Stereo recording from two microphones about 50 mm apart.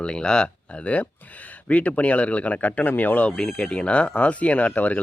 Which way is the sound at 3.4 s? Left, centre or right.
Centre.